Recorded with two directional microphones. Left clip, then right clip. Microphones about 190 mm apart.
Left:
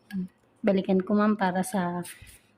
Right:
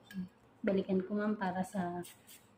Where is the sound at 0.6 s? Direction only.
70° left (ahead or behind).